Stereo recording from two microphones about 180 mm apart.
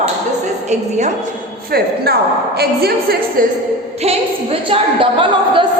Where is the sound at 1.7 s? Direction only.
60° right (ahead or behind).